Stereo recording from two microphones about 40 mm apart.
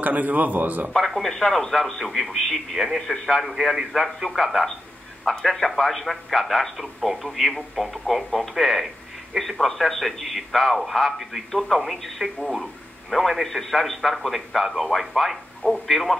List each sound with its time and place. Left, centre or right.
0.0 s a man's voice: right
0.9 s a man's voice: centre